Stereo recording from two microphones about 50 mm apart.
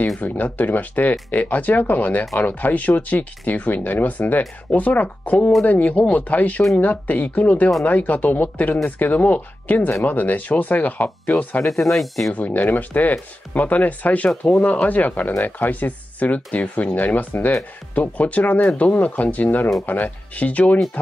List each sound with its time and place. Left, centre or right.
0.2 s speech: left
11.8 s speech: centre
12.3 s speech: left